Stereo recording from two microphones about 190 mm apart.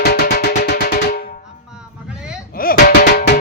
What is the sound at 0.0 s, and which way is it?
Music, 55° left (ahead or behind).